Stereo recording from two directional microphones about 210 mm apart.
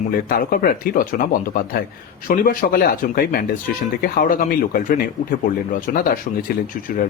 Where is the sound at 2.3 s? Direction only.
40° left (ahead or behind).